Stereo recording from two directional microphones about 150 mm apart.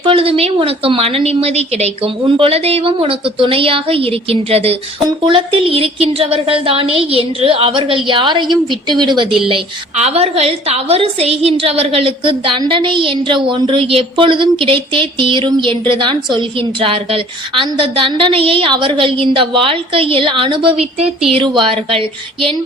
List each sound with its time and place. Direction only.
0.0 s a woman's voice: 40° right (ahead or behind)
9.5 s a woman's voice: 45° right (ahead or behind)